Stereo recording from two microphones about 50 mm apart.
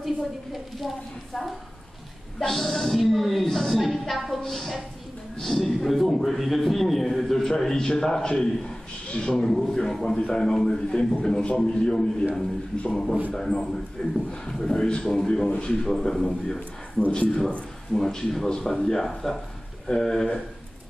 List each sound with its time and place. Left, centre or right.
0.0 s a man's voice: centre